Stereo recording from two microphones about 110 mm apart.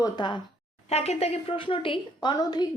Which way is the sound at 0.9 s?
70° left (ahead or behind).